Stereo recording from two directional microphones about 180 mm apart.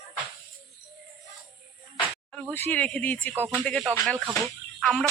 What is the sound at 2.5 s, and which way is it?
Speech, 10° left (ahead or behind).